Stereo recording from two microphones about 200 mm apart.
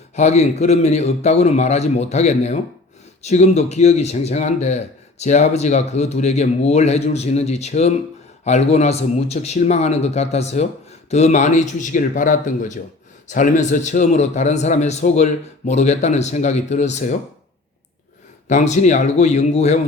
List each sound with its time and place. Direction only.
0.2 s a man's voice: 35° left (ahead or behind)
18.4 s a man's voice: 35° left (ahead or behind)